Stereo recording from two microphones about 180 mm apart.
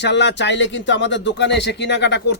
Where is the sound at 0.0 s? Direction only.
75° left (ahead or behind).